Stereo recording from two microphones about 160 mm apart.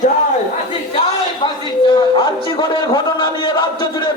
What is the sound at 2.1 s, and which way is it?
A man's voice, 30° left (ahead or behind).